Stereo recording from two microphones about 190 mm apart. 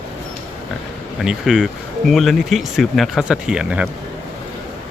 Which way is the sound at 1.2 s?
5° right (ahead or behind).